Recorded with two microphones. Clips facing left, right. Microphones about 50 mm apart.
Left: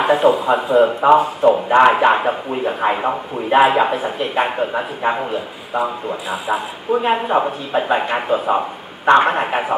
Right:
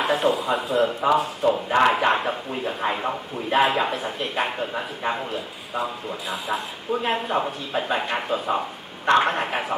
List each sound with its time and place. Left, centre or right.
0.0 s speech: centre
6.3 s speech: centre